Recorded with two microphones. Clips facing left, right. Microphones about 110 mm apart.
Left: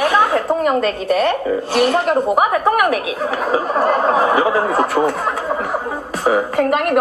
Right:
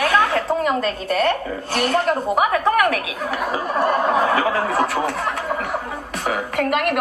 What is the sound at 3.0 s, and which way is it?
A woman's voice, 30° left (ahead or behind).